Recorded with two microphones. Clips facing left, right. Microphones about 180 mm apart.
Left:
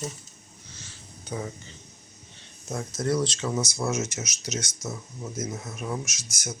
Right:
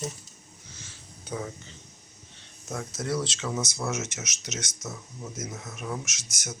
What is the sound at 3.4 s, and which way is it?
Speech, 15° left (ahead or behind).